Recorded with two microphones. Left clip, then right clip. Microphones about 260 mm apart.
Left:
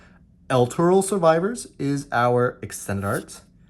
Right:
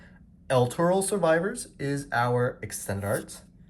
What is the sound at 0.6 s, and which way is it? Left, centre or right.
Speech, left.